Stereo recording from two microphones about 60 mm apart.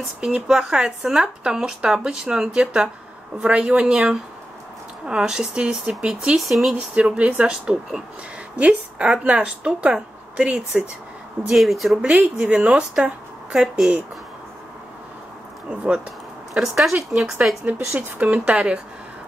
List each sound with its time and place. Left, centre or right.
0.2 s speech: centre
6.3 s speech: centre
6.7 s a woman's voice: centre
11.4 s speech: centre
12.0 s speech: centre
15.7 s a woman's voice: right
16.5 s speech: centre
17.7 s a woman's voice: right